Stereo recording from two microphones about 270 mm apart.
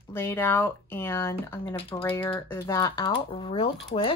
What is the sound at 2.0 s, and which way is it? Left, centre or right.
A woman's voice, centre.